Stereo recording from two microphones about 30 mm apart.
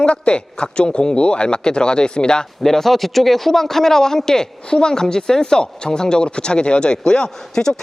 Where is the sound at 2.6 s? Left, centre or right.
Centre.